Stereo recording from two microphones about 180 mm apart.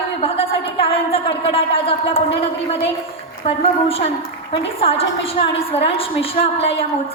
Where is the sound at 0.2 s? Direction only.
30° left (ahead or behind).